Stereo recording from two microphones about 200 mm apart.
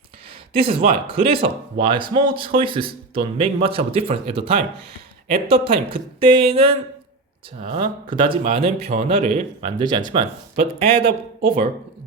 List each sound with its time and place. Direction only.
0.5 s speech: 30° right (ahead or behind)